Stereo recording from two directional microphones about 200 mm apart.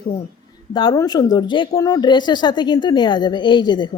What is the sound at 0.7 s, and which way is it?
Speech, 25° left (ahead or behind).